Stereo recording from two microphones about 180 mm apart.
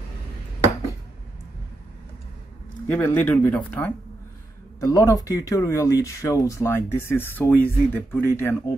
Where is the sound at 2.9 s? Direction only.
10° left (ahead or behind).